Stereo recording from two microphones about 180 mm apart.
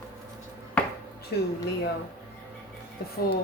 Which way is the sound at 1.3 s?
60° left (ahead or behind).